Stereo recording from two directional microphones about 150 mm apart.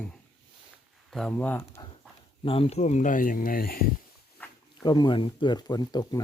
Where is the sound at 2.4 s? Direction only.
40° left (ahead or behind); by 3.8 s 80° left.